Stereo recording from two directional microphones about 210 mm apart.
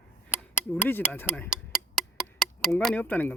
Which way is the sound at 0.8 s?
10° left (ahead or behind).